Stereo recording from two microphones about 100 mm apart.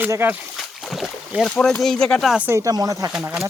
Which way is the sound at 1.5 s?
10° left (ahead or behind).